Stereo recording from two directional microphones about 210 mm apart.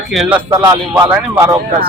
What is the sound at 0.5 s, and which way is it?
Speech, 25° right (ahead or behind).